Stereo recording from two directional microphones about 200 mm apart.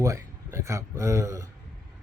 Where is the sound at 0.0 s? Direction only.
15° right (ahead or behind).